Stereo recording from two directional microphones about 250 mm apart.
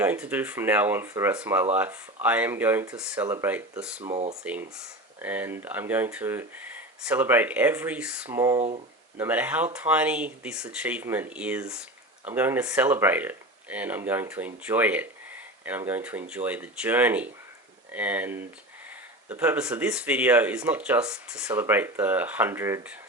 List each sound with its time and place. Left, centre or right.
0.0 s speech: centre
4.0 s speech: right
5.2 s speech: centre
8.5 s speech: right
9.1 s speech: centre